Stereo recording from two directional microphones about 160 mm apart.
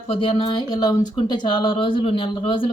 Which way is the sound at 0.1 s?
35° left (ahead or behind).